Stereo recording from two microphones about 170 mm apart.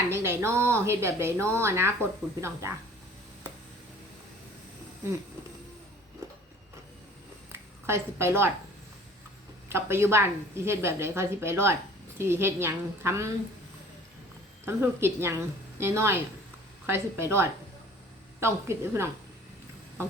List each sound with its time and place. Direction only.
0.1 s a woman's voice: 15° right (ahead or behind)
7.5 s a sound: 15° right (ahead or behind)
9.6 s a woman's voice: 15° right (ahead or behind)
14.6 s a woman's voice: 15° right (ahead or behind)